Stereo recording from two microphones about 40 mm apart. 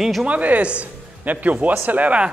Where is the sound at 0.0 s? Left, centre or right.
Centre.